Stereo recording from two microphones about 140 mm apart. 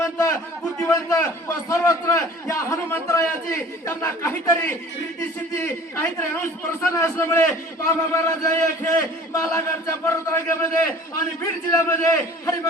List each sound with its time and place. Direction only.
0.0 s a sound: 20° left (ahead or behind)
0.8 s a man's voice: 20° left (ahead or behind)
11.7 s a man's voice: 20° left (ahead or behind)